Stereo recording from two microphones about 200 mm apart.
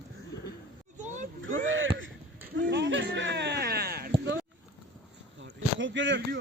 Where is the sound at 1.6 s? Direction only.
75° right (ahead or behind).